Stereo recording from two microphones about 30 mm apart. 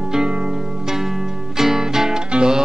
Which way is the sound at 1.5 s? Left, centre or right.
Centre.